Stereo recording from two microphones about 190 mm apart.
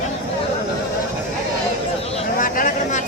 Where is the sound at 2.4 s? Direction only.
45° left (ahead or behind).